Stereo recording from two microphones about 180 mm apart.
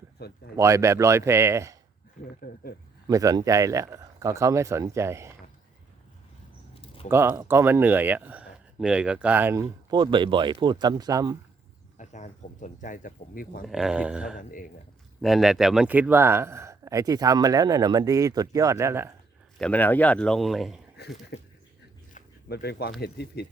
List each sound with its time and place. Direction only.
0.2 s speech: 60° left (ahead or behind)
0.5 s speech: 15° right (ahead or behind)
2.4 s speech: 55° left (ahead or behind)
3.1 s speech: 20° right (ahead or behind)
6.8 s a sound: 30° left (ahead or behind)
7.1 s speech: 15° right (ahead or behind)
11.9 s speech: 45° left (ahead or behind)
13.7 s a man's voice: 5° right (ahead or behind)
14.3 s speech: 50° left (ahead or behind)
15.2 s speech: centre (ahead or behind)
19.5 s a man's voice: 5° left (ahead or behind)
22.4 s speech: 65° left (ahead or behind)